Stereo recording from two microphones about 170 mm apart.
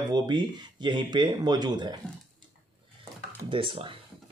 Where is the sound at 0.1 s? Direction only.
25° right (ahead or behind).